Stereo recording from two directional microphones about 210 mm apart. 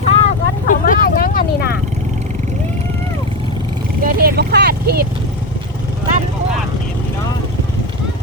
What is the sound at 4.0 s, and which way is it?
Speech, 45° right (ahead or behind).